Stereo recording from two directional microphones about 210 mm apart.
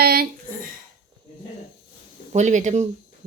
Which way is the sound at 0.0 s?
50° right (ahead or behind).